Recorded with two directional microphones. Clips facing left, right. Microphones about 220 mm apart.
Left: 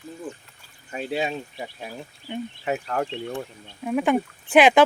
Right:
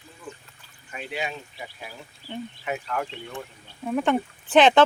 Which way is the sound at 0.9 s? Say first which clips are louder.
Left 6 dB; 35° left (ahead or behind).